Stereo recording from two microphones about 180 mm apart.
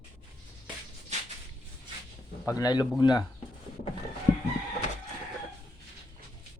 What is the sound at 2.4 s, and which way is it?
Speech, 20° left (ahead or behind).